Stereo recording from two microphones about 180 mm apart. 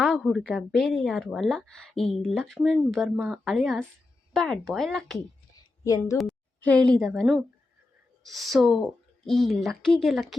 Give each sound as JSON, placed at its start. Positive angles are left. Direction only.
{"t": 0.0, "sound": "speech", "side_deg": 0}
{"t": 5.8, "sound": "a woman's voice", "side_deg": 15}
{"t": 6.1, "sound": "a woman's voice", "side_deg": 5}